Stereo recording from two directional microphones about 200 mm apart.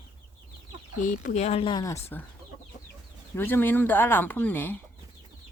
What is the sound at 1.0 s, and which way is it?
A woman's voice, 35° left (ahead or behind).